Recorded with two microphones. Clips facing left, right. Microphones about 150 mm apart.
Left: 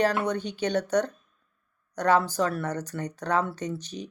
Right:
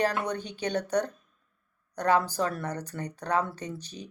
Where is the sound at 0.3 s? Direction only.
35° right (ahead or behind).